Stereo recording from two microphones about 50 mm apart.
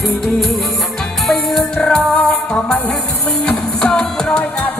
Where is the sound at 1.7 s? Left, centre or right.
Centre.